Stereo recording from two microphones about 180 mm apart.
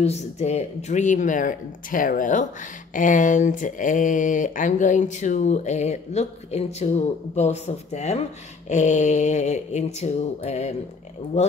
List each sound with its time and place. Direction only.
0.0 s speech: 35° left (ahead or behind)